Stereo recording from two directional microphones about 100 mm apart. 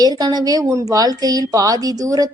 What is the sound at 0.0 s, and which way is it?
A woman's voice, 40° right (ahead or behind).